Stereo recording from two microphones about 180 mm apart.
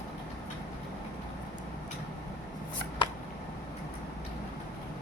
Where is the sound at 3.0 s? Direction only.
25° left (ahead or behind).